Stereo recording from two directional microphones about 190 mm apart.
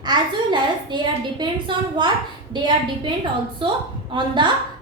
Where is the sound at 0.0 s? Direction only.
20° right (ahead or behind).